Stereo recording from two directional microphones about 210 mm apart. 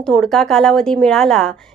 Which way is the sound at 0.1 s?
Centre (ahead or behind).